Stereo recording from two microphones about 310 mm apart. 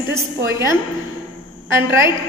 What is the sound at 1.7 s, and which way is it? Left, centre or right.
Speech, centre.